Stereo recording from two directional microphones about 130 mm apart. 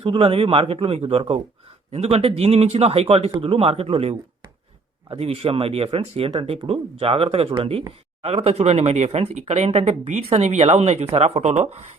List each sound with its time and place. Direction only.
0.0 s a woman's voice: 45° right (ahead or behind)
9.0 s speech: 45° right (ahead or behind)
9.3 s a woman's voice: 60° right (ahead or behind)